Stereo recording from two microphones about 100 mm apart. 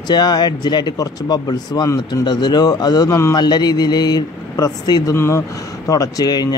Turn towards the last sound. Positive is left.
turn(degrees=40)  # may be behind; listen again after turning